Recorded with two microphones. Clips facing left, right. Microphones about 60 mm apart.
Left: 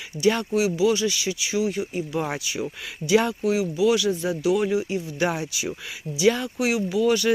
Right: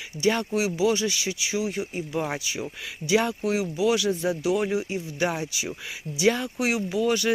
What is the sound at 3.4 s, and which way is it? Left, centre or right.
Speech, right.